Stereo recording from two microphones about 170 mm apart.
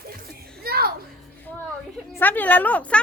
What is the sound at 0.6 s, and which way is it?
Music, 65° right (ahead or behind).